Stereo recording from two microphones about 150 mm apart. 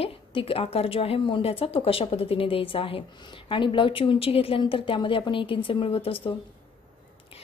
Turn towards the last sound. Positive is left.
turn(degrees=35)  # may be behind; listen again after turning